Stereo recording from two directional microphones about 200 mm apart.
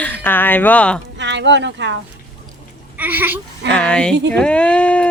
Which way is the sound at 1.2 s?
65° right (ahead or behind).